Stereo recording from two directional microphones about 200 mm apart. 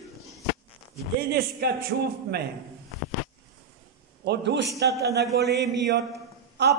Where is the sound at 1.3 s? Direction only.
55° right (ahead or behind).